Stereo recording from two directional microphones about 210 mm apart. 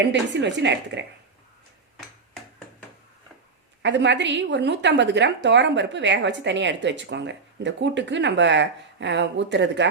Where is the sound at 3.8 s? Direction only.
60° right (ahead or behind).